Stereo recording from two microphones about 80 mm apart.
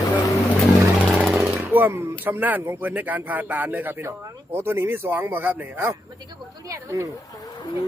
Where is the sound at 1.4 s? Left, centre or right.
Centre.